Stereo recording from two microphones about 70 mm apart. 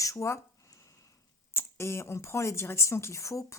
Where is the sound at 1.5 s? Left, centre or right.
Left.